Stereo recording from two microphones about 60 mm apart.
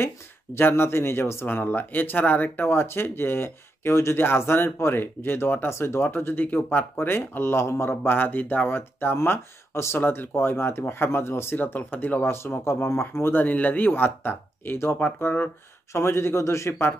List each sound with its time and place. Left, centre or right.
0.6 s a man's voice: left
6.0 s a man's voice: left